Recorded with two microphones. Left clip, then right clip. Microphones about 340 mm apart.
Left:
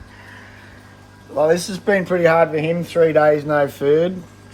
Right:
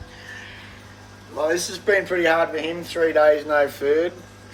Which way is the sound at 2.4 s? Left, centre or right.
Centre.